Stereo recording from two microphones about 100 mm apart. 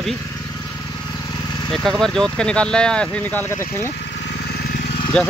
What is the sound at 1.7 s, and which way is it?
Speech, 5° left (ahead or behind).